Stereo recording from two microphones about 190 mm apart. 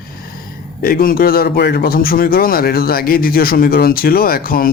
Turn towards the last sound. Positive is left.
turn(degrees=50)  # may be behind; listen again after turning